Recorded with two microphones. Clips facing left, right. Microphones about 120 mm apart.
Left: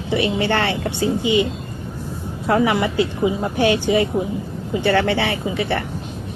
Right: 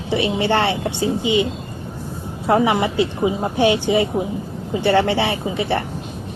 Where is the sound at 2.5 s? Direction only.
25° right (ahead or behind).